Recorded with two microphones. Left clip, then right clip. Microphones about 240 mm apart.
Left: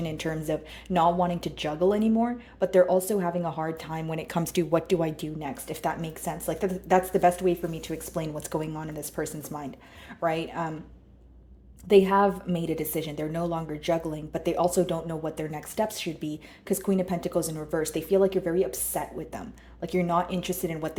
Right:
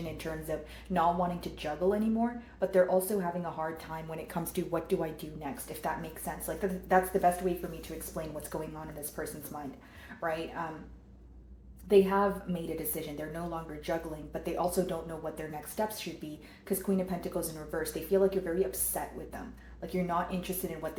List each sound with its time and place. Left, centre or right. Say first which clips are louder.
0.0 s speech: left 7 dB; left
11.9 s speech: left 5 dB; left